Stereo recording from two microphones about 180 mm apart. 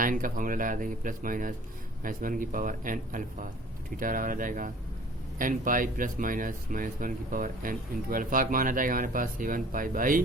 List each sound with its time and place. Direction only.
0.0 s speech: 50° right (ahead or behind)